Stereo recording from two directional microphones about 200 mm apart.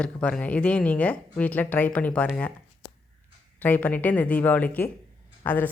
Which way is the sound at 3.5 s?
10° left (ahead or behind).